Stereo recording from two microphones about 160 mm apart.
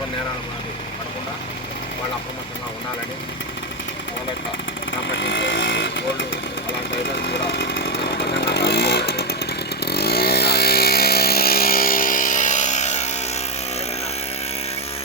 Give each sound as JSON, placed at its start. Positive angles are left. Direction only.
{"t": 5.3, "sound": "a sound", "side_deg": 90}
{"t": 7.2, "sound": "chainsaw", "side_deg": 90}
{"t": 8.2, "sound": "motorcycle", "side_deg": 90}
{"t": 9.8, "sound": "vehicle", "side_deg": 85}